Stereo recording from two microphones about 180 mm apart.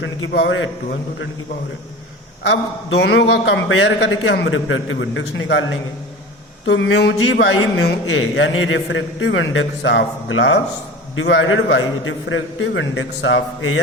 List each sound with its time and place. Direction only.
0.0 s a man's voice: 90° left
2.5 s a man's voice: 70° left (ahead or behind); by 5.7 s 90° left
6.7 s speech: 75° left (ahead or behind)
7.8 s a man's voice: 80° left